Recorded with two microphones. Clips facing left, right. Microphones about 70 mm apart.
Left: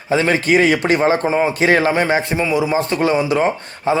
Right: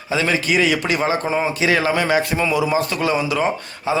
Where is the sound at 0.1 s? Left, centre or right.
Left.